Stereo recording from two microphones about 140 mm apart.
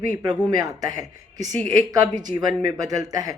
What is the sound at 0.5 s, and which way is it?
Speech, 25° right (ahead or behind).